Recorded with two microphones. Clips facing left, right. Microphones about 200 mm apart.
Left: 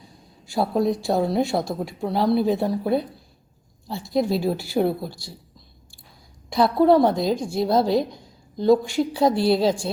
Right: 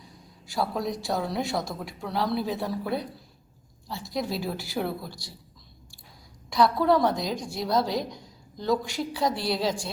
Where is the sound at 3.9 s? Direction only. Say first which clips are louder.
Left 8 dB; 55° left (ahead or behind).